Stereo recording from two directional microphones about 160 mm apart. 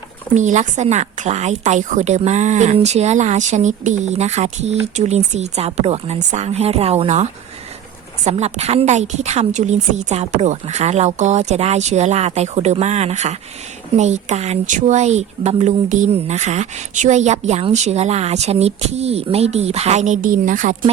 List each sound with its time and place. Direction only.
0.3 s a woman's voice: 50° right (ahead or behind)